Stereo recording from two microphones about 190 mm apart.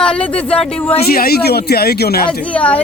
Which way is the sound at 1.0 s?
55° left (ahead or behind).